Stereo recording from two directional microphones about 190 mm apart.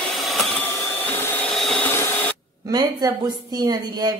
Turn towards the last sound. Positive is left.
turn(degrees=-20)  # may be behind; listen again after turning